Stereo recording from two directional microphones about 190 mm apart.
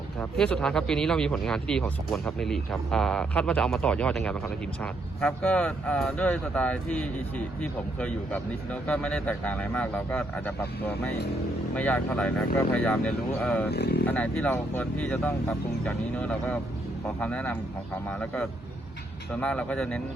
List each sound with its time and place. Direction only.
0.2 s speech: 5° left (ahead or behind)
11.7 s speech: 5° left (ahead or behind)
13.7 s speech: 55° left (ahead or behind)
14.1 s speech: 5° left (ahead or behind)